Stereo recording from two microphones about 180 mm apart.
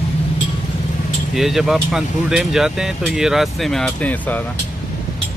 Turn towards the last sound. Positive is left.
turn(degrees=10)  # may be behind; listen again after turning